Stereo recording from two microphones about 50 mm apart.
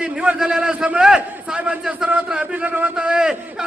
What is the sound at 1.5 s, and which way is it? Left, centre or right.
A man's voice, right.